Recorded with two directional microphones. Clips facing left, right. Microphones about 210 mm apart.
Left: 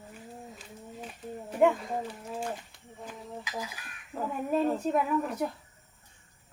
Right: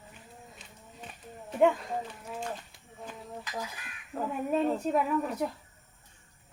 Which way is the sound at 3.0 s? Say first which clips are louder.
Left 1 dB; 10° left (ahead or behind).